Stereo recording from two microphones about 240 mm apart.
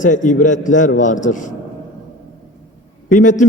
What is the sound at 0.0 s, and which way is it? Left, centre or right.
A man's voice, left.